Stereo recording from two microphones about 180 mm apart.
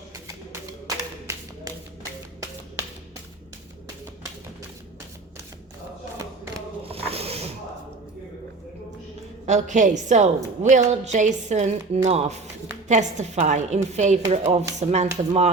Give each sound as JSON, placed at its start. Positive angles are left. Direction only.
{"t": 0.9, "sound": "clapping", "side_deg": -20}
{"t": 6.8, "sound": "a sound", "side_deg": -35}
{"t": 9.5, "sound": "a woman's voice", "side_deg": -40}